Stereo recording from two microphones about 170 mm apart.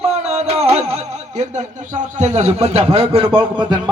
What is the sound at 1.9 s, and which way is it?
A man's voice, 45° right (ahead or behind).